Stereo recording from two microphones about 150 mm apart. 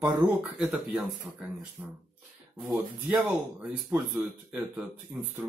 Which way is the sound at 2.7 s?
10° right (ahead or behind).